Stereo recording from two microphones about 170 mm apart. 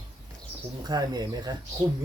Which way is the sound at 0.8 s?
25° right (ahead or behind).